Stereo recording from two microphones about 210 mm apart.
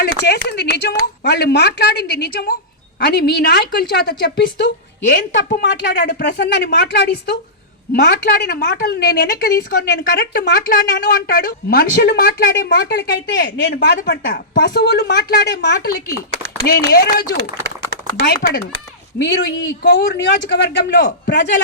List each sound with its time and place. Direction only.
0.0 s a woman's voice: 50° left (ahead or behind)